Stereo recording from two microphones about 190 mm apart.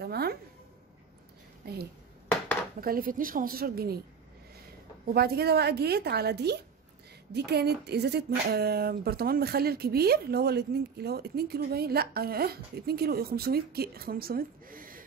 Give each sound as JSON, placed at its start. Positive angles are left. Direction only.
{"t": 0.0, "sound": "music", "side_deg": -55}
{"t": 1.6, "sound": "a woman's voice", "side_deg": -55}
{"t": 5.1, "sound": "speech", "side_deg": -55}